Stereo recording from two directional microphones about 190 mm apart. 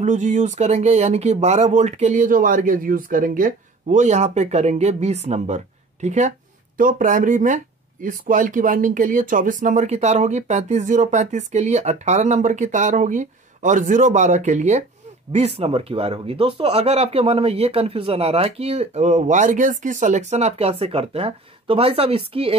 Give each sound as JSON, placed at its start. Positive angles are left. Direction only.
{"t": 0.0, "sound": "speech", "side_deg": -40}